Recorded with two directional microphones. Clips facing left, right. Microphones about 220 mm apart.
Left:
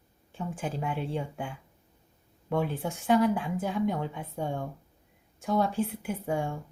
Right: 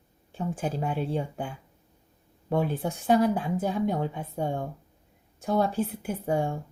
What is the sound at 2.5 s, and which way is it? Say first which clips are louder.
A woman's voice: right 2 dB; 40° right (ahead or behind).